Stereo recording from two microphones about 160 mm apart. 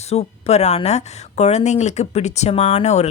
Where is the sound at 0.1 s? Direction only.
40° left (ahead or behind).